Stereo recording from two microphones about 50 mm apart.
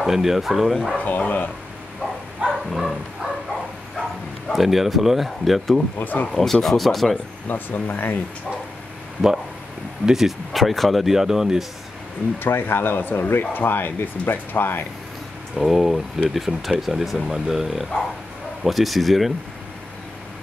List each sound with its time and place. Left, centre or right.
0.0 s speech: centre
1.0 s speech: left
2.4 s bow-wow: centre
4.5 s speech: centre
5.9 s speech: left
6.2 s speech: centre
7.4 s speech: left
10.0 s speech: centre
12.4 s speech: left
15.5 s speech: centre